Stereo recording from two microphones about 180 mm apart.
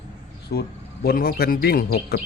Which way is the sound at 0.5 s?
60° left (ahead or behind).